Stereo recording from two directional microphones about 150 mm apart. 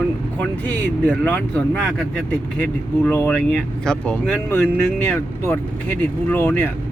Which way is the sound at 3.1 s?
10° left (ahead or behind).